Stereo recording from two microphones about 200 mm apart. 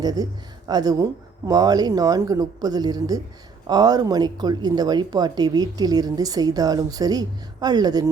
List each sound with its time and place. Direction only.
0.0 s speech: 20° right (ahead or behind)